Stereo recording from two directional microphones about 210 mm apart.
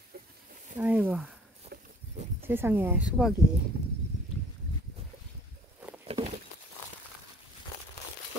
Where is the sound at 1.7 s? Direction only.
50° right (ahead or behind).